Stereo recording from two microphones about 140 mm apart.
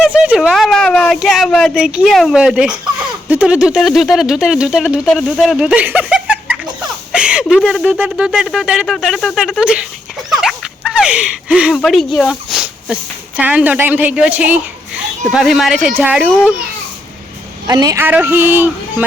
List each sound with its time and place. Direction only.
0.0 s a sound: 5° right (ahead or behind)
1.5 s speech: 5° left (ahead or behind)
1.7 s speech: 5° right (ahead or behind)
17.7 s speech: 25° right (ahead or behind)
18.0 s speech: 15° right (ahead or behind)